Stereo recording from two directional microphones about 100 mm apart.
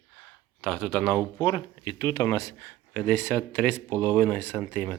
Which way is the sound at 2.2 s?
30° left (ahead or behind).